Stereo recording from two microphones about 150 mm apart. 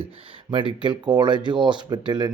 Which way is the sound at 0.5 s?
30° right (ahead or behind).